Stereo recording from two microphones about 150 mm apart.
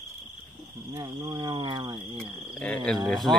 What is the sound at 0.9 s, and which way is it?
Cricket, 30° right (ahead or behind).